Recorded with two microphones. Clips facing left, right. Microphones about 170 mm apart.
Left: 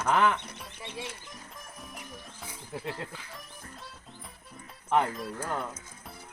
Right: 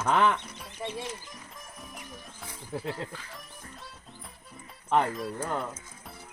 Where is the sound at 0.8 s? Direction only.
55° right (ahead or behind).